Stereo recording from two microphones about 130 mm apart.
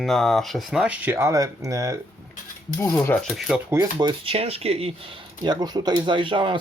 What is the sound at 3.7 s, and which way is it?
Speech, 25° right (ahead or behind).